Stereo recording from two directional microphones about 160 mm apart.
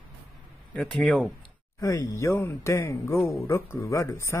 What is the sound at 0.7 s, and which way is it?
Speech, 5° left (ahead or behind).